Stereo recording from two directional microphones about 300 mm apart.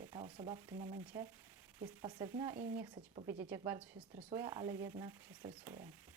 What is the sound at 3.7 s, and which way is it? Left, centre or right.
Speech, centre.